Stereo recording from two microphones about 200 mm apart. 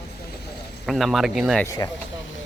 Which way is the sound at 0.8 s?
Centre (ahead or behind).